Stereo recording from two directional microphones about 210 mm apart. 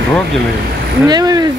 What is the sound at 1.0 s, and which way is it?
Speech, 20° right (ahead or behind).